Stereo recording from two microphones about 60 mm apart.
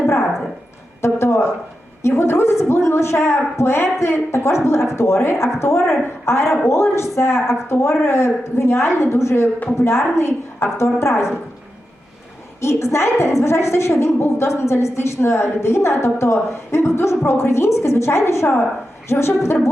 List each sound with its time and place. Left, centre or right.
0.0 s a sound: left
1.0 s a woman's voice: left
12.6 s a woman's voice: left